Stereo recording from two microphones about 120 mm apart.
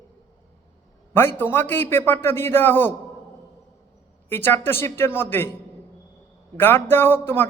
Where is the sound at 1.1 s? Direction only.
20° left (ahead or behind).